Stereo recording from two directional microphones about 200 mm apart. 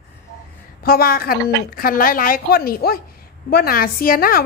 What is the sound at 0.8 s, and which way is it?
A woman's voice, 45° left (ahead or behind).